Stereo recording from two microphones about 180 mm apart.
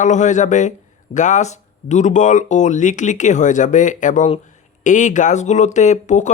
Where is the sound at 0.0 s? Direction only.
40° left (ahead or behind).